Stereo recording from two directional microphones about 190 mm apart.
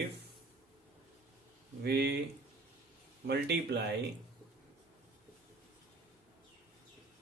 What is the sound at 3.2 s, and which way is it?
Speech, 60° right (ahead or behind).